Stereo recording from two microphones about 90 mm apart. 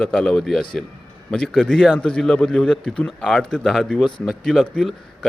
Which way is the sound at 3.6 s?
Centre (ahead or behind).